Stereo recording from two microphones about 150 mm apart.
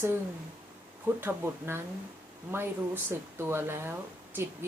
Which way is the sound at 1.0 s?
15° right (ahead or behind).